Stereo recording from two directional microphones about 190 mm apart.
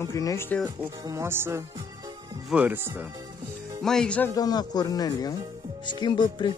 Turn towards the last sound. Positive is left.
turn(degrees=25)  # may be behind; listen again after turning